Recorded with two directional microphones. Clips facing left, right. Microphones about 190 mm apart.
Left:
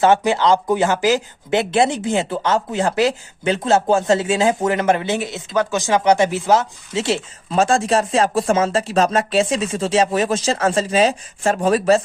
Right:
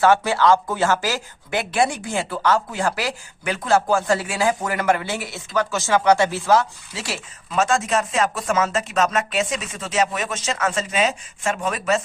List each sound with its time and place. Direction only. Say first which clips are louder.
0.0 s speech: left 2 dB; 20° left (ahead or behind)